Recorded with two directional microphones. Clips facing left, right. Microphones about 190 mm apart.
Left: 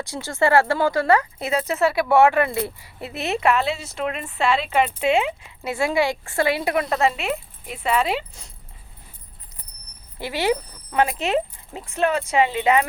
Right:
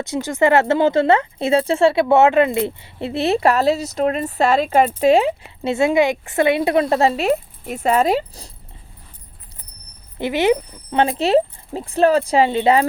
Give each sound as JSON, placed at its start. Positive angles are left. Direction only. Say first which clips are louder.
{"t": 0.0, "sound": "speech", "louder": "right 4 dB", "side_deg": -20}
{"t": 10.2, "sound": "speech", "louder": "right 6 dB", "side_deg": -20}